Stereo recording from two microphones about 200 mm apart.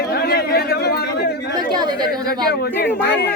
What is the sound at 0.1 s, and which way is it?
Chatter, 50° left (ahead or behind).